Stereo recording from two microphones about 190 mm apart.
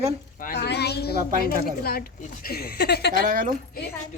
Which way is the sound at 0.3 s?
55° left (ahead or behind).